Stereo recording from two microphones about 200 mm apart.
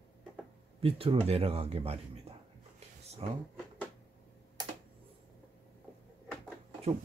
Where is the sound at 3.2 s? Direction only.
30° right (ahead or behind).